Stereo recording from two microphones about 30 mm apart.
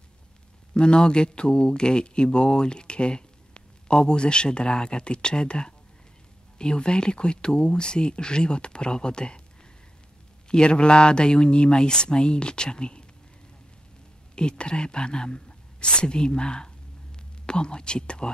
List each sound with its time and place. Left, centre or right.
0.7 s speech: left
10.5 s speech: left
14.3 s speech: left